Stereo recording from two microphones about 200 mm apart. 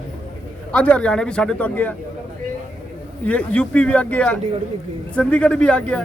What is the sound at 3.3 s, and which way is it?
Speech, 5° left (ahead or behind).